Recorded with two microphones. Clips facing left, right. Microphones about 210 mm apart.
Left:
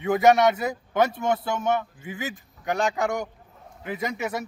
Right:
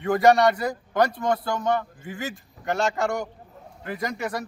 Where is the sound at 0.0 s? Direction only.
Centre (ahead or behind).